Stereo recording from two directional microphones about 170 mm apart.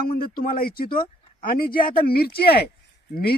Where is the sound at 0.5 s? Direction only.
60° left (ahead or behind).